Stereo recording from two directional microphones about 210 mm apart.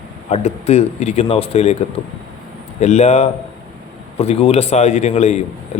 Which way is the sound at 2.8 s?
30° left (ahead or behind).